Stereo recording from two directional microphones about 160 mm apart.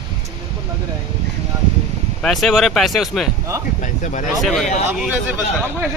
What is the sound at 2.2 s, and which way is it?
Speech, centre (ahead or behind).